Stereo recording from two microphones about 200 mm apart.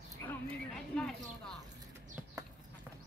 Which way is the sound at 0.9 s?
5° left (ahead or behind).